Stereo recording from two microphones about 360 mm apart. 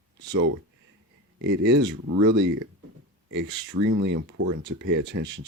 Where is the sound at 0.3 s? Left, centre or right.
Right.